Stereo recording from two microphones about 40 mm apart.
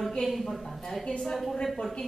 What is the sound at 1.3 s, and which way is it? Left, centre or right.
Speech, centre.